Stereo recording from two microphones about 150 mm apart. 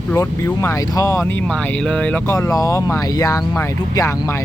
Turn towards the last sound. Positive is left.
turn(degrees=25)  # may be behind; listen again after turning